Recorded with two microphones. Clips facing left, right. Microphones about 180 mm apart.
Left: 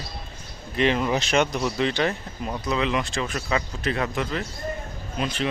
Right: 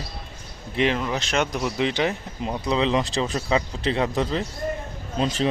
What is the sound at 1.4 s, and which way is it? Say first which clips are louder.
A man's voice: even; 10° right (ahead or behind).